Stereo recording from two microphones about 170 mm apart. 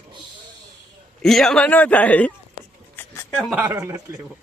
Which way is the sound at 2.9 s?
15° left (ahead or behind).